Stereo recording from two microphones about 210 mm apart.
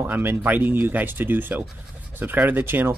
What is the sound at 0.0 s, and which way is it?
Speech, 10° right (ahead or behind).